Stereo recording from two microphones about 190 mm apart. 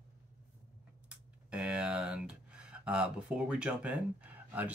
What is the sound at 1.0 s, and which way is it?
Speech, 5° right (ahead or behind).